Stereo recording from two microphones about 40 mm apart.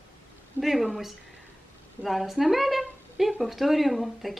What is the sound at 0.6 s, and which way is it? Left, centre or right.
A woman's voice, centre.